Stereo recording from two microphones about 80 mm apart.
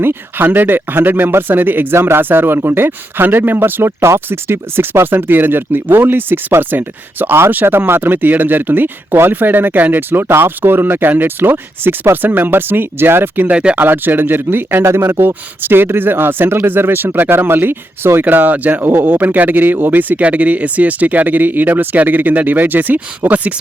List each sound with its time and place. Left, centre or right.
0.0 s speech: right